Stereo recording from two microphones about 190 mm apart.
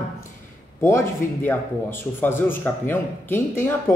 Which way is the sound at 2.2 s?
10° left (ahead or behind).